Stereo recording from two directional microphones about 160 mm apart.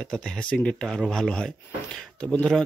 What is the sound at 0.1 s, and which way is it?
Speech, 5° left (ahead or behind).